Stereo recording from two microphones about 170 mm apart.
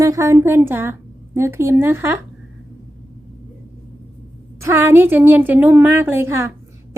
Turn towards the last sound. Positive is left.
turn(degrees=-15)  # may be behind; listen again after turning